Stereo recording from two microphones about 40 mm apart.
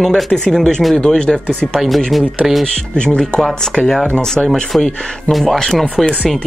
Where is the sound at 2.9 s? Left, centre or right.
Left.